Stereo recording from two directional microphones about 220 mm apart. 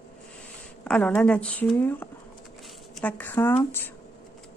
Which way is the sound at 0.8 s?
5° left (ahead or behind).